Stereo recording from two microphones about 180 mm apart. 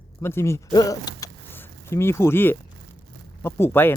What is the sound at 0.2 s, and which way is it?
Speech, 15° left (ahead or behind).